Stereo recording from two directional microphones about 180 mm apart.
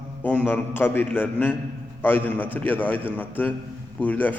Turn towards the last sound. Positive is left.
turn(degrees=10)  # may be behind; listen again after turning